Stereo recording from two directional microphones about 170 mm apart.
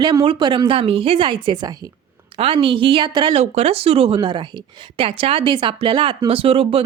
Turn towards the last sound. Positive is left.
turn(degrees=-35)  # may be behind; listen again after turning